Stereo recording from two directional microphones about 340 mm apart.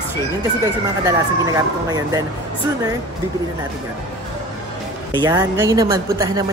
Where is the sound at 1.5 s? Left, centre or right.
Centre.